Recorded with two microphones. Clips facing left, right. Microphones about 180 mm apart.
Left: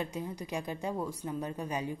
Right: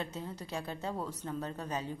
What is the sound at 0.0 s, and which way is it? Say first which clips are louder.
A woman's voice: left 3 dB; 15° left (ahead or behind).